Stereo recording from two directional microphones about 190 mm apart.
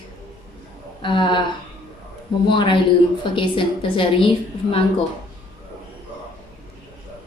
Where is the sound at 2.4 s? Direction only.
25° left (ahead or behind).